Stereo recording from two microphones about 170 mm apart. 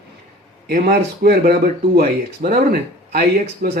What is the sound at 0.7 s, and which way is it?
Speech, 60° right (ahead or behind).